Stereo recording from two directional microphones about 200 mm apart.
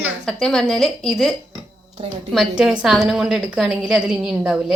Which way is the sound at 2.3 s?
5° right (ahead or behind).